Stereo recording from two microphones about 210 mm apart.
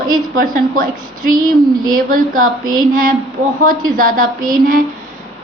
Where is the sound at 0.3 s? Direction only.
40° right (ahead or behind).